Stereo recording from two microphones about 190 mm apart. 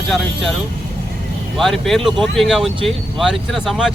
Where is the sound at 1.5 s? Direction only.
Centre (ahead or behind).